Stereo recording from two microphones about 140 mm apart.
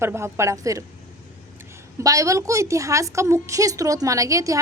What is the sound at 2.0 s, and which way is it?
A woman's voice, 25° right (ahead or behind).